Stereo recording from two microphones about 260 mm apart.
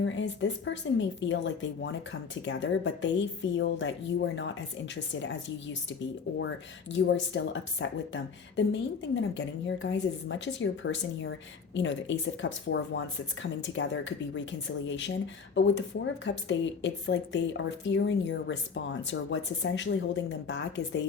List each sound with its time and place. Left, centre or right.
0.0 s a woman's voice: left
2.4 s a woman's voice: left
6.9 s a woman's voice: left